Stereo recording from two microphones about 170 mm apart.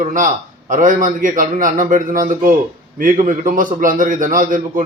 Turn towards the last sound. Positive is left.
turn(degrees=-50)  # may be behind; listen again after turning